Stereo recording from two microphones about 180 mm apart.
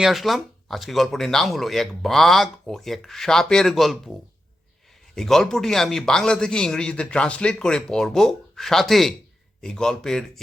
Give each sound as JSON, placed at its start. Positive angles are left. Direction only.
{"t": 0.0, "sound": "speech", "side_deg": 0}
{"t": 5.1, "sound": "speech", "side_deg": 0}